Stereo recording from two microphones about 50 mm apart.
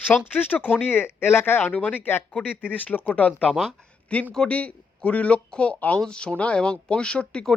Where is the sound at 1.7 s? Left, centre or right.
Left.